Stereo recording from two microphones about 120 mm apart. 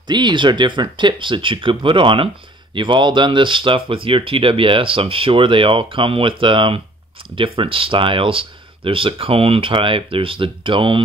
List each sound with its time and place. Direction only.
0.1 s speech: 40° right (ahead or behind)